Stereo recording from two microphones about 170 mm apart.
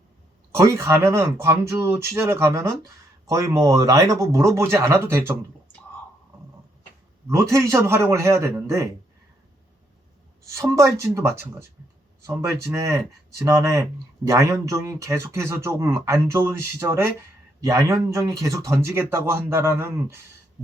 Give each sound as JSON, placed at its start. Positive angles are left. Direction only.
{"t": 0.5, "sound": "speech", "side_deg": -15}
{"t": 7.3, "sound": "speech", "side_deg": -15}
{"t": 10.5, "sound": "speech", "side_deg": -20}